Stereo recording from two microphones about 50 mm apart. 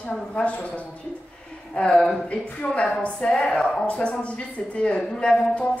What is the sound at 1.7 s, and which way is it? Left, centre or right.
Speech, centre.